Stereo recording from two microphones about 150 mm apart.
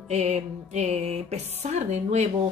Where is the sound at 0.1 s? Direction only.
45° right (ahead or behind).